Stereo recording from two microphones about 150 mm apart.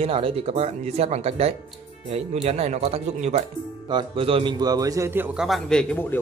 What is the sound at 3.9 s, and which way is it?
A man's voice, 35° right (ahead or behind).